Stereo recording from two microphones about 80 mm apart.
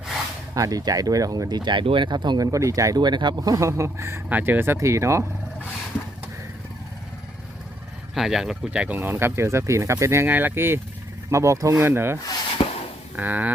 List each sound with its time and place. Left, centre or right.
0.5 s speech: right
2.5 s speech: right
3.0 s speech: right
8.1 s speech: centre
8.8 s speech: right
10.2 s speech: right
11.8 s speech: right
13.1 s speech: right